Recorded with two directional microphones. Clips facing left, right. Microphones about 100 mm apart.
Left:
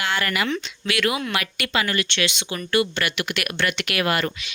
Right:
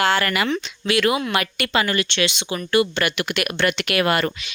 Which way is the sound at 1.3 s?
40° right (ahead or behind).